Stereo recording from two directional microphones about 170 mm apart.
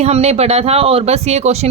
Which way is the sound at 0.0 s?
40° right (ahead or behind).